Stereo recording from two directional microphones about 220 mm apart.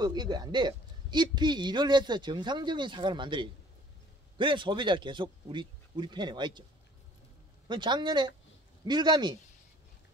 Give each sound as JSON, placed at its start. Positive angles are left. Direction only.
{"t": 0.0, "sound": "a woman's voice", "side_deg": -20}
{"t": 7.6, "sound": "a woman's voice", "side_deg": -20}